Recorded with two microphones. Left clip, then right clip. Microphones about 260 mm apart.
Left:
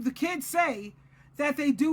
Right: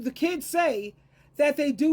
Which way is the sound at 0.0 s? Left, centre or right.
Centre.